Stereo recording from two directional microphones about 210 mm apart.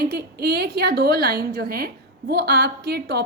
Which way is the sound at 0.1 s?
50° right (ahead or behind).